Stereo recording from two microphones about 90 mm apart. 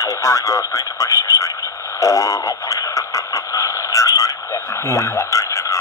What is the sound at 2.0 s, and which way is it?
Radio, 35° left (ahead or behind).